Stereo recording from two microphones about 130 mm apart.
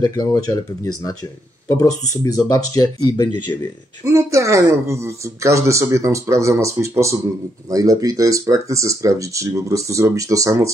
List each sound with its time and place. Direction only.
0.0 s speech: 30° left (ahead or behind)
4.0 s speech: 20° right (ahead or behind)